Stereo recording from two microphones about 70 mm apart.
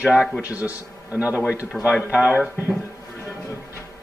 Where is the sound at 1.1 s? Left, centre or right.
Right.